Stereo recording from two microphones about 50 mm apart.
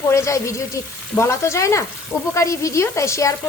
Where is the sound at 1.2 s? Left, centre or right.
Left.